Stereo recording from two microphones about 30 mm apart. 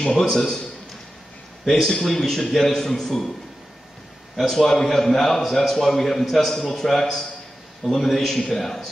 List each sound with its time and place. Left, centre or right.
0.3 s a man's voice: centre
1.6 s a man's voice: centre
4.4 s a man's voice: centre